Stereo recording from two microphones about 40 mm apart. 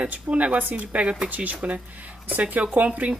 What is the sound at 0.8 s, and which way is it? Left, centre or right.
Speech, right.